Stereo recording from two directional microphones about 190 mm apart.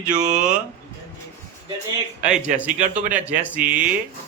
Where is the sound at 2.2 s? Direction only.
5° right (ahead or behind).